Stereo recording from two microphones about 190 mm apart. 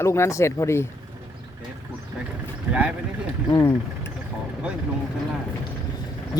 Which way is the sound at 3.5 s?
20° left (ahead or behind).